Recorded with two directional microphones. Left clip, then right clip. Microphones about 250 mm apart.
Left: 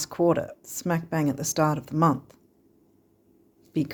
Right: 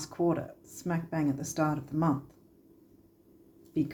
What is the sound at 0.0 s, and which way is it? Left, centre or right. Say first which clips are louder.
Speech: left 7 dB; left.